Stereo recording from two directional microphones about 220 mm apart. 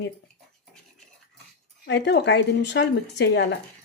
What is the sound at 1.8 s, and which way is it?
Speech, 50° left (ahead or behind).